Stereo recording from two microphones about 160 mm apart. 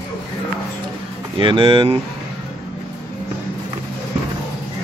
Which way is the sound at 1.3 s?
30° right (ahead or behind).